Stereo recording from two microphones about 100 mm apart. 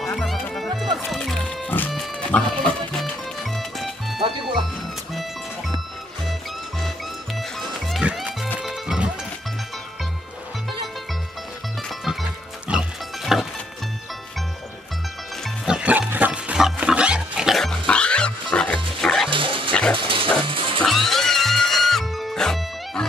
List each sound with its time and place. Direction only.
0.1 s music: centre (ahead or behind)
1.9 s pig: centre (ahead or behind)
2.3 s music: 5° left (ahead or behind)
8.0 s music: 10° right (ahead or behind)
12.0 s music: centre (ahead or behind)
12.7 s music: 10° right (ahead or behind)
13.2 s music: centre (ahead or behind)
15.6 s music: 10° right (ahead or behind)
19.3 s dog: 60° right (ahead or behind)
19.7 s dog: 10° left (ahead or behind)
20.0 s dog: 55° right (ahead or behind)
20.4 s music: 60° right (ahead or behind)
20.8 s music: centre (ahead or behind)